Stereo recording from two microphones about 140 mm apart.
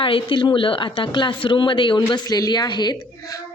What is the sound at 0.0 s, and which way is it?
Speech, 40° left (ahead or behind).